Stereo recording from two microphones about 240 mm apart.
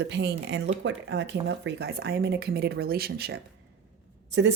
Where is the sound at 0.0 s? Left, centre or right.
Right.